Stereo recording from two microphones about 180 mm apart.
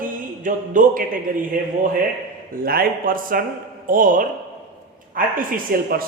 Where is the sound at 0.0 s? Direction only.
45° right (ahead or behind).